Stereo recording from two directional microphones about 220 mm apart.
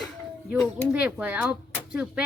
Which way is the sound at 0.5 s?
5° right (ahead or behind).